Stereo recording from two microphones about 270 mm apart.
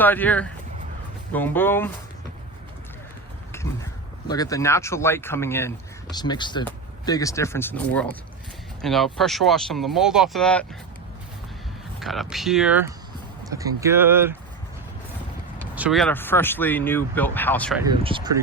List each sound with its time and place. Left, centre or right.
0.0 s speech: centre
4.3 s speech: centre
11.9 s speech: centre
15.7 s speech: centre
17.7 s speech: centre